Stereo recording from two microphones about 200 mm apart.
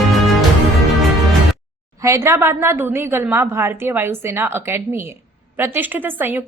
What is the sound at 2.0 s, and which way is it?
A woman's voice, 15° right (ahead or behind).